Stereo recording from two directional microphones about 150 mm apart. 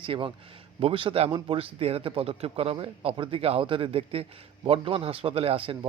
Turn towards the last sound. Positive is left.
turn(degrees=-35)  # may be behind; listen again after turning